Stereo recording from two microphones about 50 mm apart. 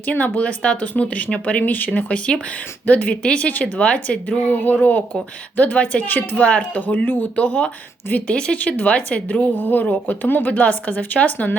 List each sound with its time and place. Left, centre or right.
0.0 s speech: left
2.8 s speech: left
6.4 s speech: left
6.8 s speech: left
7.3 s speech: left
8.5 s speech: left